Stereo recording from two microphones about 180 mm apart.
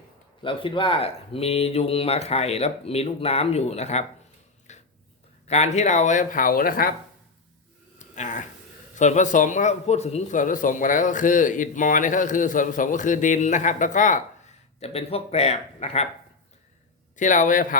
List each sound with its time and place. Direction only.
0.4 s speech: 30° left (ahead or behind)
4.7 s a sound: 40° left (ahead or behind)
5.5 s a man's voice: 40° left (ahead or behind)
7.9 s a sound: 40° left (ahead or behind)
9.0 s a man's voice: 40° left (ahead or behind)
17.2 s a man's voice: 45° left (ahead or behind)